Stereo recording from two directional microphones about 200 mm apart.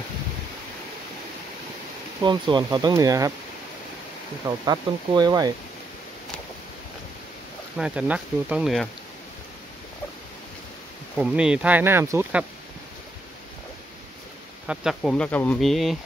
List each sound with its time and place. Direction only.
2.2 s speech: 20° right (ahead or behind)
4.5 s speech: 20° right (ahead or behind)
7.7 s speech: 5° right (ahead or behind)
11.1 s speech: 5° right (ahead or behind)
14.7 s speech: 5° right (ahead or behind)